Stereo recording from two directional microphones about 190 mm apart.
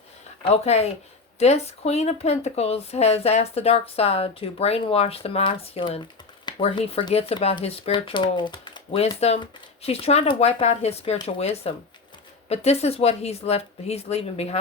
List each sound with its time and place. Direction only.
0.5 s speech: 35° left (ahead or behind)